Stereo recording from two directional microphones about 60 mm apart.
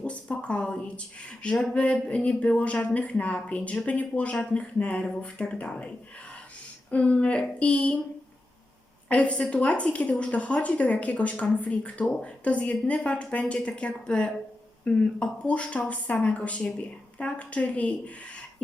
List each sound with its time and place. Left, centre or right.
0.0 s speech: left
6.9 s speech: left
9.0 s speech: left